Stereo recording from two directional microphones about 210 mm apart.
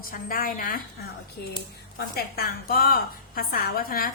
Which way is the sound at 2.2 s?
45° left (ahead or behind).